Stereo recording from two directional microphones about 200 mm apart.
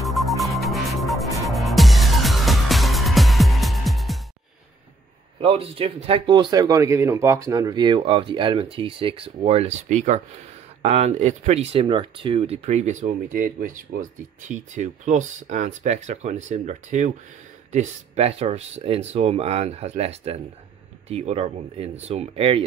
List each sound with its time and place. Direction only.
0.0 s music: centre (ahead or behind)
5.4 s speech: 25° right (ahead or behind)